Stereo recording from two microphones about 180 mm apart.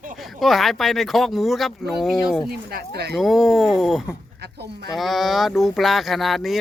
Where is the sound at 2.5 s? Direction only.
60° right (ahead or behind).